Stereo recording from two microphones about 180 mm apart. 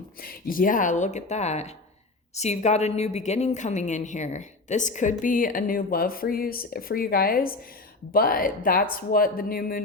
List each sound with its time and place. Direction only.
0.2 s a woman's voice: 55° left (ahead or behind)